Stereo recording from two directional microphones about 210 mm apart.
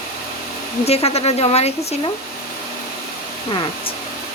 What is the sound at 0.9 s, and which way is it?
Speech, 30° left (ahead or behind).